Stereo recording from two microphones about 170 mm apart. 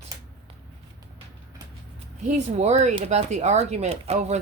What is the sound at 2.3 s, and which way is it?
A woman's voice, 40° right (ahead or behind).